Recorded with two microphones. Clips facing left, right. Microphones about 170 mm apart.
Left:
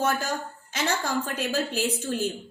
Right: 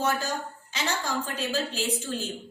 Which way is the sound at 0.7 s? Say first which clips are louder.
Left 3 dB; 50° left (ahead or behind).